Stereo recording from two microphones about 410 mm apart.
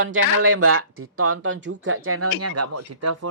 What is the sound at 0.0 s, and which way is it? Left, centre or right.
Speech, right.